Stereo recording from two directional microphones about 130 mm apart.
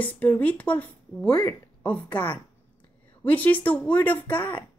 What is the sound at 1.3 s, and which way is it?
Speech, 30° left (ahead or behind).